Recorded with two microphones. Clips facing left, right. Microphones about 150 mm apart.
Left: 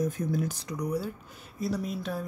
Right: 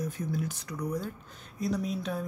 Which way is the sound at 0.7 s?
10° left (ahead or behind).